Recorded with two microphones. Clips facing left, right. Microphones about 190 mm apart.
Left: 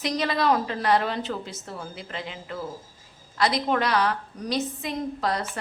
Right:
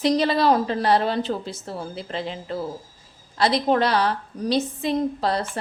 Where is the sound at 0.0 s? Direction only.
30° right (ahead or behind).